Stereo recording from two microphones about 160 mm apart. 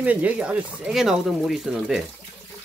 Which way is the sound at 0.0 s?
10° right (ahead or behind).